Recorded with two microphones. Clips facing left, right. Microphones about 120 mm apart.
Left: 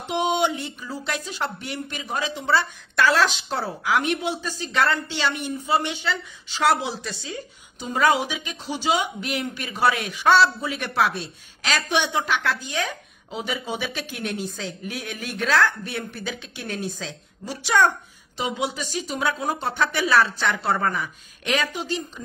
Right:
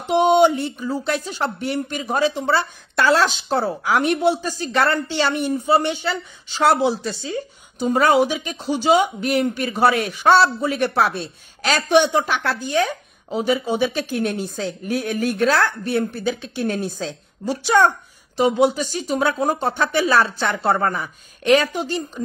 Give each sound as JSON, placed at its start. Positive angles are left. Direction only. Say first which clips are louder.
{"t": 0.1, "sound": "speech", "louder": "right 8 dB", "side_deg": -35}
{"t": 6.6, "sound": "a woman's voice", "louder": "right 5 dB", "side_deg": -30}
{"t": 18.4, "sound": "speech", "louder": "right 10 dB", "side_deg": -40}
{"t": 19.9, "sound": "speech", "louder": "right 2 dB", "side_deg": -30}